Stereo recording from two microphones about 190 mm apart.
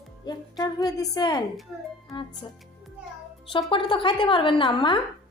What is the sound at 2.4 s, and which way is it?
Speech, 25° left (ahead or behind).